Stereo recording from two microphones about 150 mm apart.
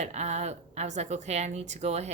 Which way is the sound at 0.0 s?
50° right (ahead or behind).